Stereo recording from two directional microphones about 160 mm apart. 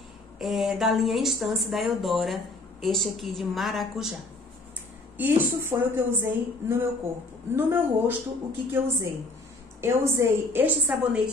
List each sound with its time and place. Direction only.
0.4 s a woman's voice: centre (ahead or behind)
5.1 s a woman's voice: 10° right (ahead or behind)
7.5 s a woman's voice: 15° right (ahead or behind)